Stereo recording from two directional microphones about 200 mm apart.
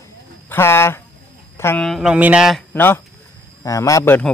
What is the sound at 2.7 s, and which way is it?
A man's voice, 10° left (ahead or behind).